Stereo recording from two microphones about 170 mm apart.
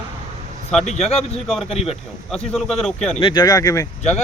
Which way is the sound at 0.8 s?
40° left (ahead or behind).